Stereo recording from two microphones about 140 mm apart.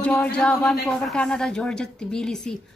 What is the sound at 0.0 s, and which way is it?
Speech, 10° left (ahead or behind).